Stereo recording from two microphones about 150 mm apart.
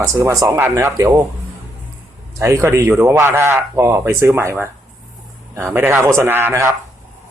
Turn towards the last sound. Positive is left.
turn(degrees=-15)  # may be behind; listen again after turning